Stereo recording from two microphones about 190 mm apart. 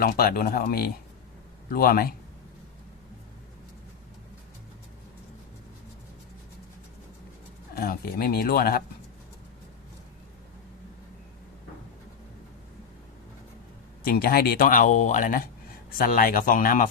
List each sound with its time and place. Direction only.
0.0 s speech: 50° left (ahead or behind)
7.8 s speech: 50° left (ahead or behind)
14.0 s speech: 50° left (ahead or behind)